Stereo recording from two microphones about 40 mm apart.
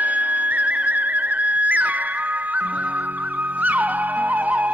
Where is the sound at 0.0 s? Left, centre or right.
Right.